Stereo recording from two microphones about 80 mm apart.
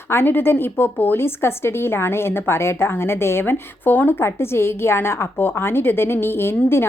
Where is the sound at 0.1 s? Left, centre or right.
Left.